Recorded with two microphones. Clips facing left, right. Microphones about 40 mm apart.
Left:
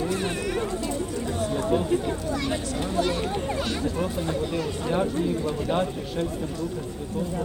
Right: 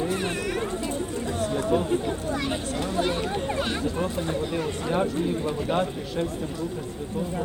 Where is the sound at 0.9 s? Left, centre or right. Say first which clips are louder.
Even; right.